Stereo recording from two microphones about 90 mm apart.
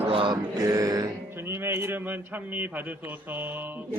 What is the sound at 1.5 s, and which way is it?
Speech, 25° right (ahead or behind).